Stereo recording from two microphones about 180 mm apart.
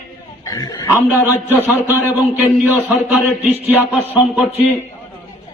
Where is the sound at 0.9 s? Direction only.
10° right (ahead or behind).